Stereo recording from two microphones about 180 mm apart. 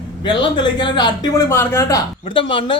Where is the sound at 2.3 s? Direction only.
30° left (ahead or behind).